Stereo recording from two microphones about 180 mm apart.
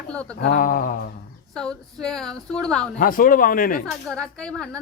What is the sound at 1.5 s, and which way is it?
Speech, 5° left (ahead or behind).